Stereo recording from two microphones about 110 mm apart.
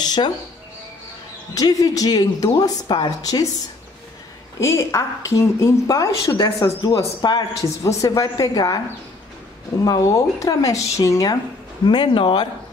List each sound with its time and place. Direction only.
0.0 s speech: 40° left (ahead or behind)
1.5 s a woman's voice: 35° left (ahead or behind)
4.6 s a woman's voice: 25° left (ahead or behind)
9.8 s a woman's voice: 30° left (ahead or behind)
11.8 s speech: 45° left (ahead or behind)